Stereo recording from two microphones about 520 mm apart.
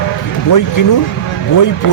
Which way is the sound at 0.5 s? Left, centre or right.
Left.